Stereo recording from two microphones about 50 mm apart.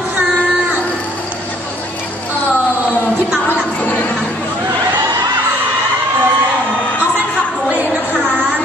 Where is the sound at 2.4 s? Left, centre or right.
Right.